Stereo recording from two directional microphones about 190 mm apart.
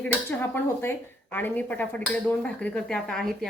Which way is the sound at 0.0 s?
10° left (ahead or behind).